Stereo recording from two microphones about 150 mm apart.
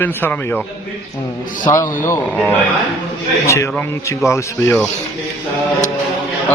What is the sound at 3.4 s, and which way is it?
A man's voice, 20° left (ahead or behind).